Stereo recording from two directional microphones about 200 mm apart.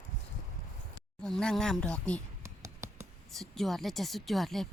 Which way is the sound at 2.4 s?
15° right (ahead or behind).